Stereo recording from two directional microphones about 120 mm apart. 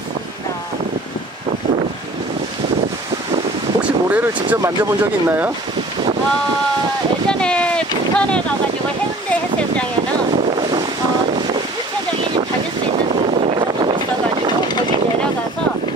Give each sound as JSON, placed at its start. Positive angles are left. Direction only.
{"t": 3.8, "sound": "speech", "side_deg": -10}
{"t": 7.2, "sound": "speech", "side_deg": 10}
{"t": 13.3, "sound": "wind noise", "side_deg": -60}
{"t": 13.6, "sound": "a sound", "side_deg": -40}